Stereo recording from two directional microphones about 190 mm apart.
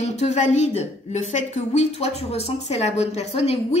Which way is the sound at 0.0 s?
35° left (ahead or behind).